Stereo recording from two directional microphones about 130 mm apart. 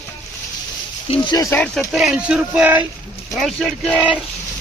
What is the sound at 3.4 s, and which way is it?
Speech, centre (ahead or behind).